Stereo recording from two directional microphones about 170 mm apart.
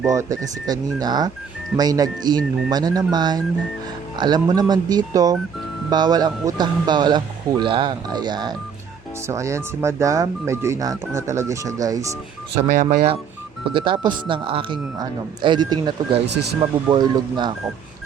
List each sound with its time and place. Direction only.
0.0 s speech: 20° right (ahead or behind)
13.7 s speech: 30° right (ahead or behind)
16.2 s speech: 85° right
16.9 s speech: 25° right (ahead or behind)